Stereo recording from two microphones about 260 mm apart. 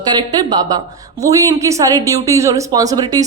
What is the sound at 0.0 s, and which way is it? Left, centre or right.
A woman's voice, centre.